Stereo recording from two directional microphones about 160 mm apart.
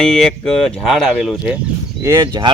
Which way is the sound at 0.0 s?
5° left (ahead or behind).